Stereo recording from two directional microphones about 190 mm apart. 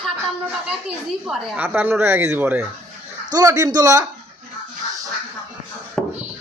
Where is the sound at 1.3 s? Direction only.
10° right (ahead or behind).